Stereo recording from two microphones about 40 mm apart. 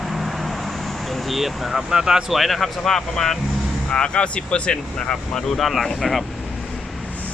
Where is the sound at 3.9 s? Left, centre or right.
Left.